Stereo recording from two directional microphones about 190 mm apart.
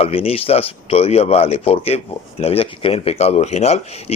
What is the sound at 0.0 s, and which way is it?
Speech, 30° left (ahead or behind).